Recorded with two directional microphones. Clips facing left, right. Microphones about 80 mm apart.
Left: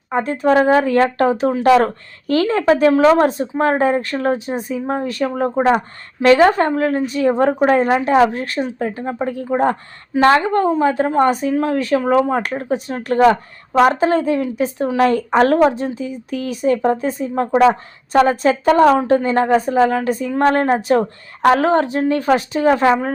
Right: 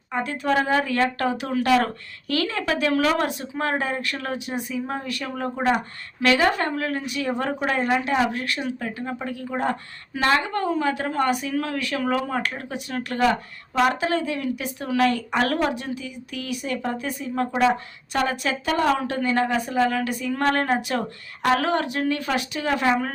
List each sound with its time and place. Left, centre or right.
0.1 s speech: left